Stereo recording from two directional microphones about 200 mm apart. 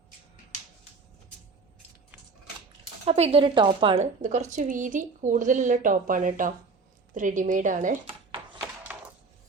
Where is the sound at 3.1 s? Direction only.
30° right (ahead or behind).